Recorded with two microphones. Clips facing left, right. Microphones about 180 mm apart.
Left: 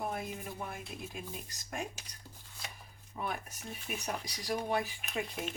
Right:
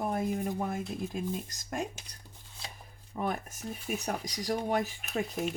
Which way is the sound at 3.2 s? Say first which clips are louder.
Right 5 dB; 45° right (ahead or behind).